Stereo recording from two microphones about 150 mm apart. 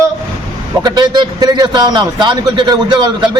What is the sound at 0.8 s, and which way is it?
A man's voice, 30° right (ahead or behind).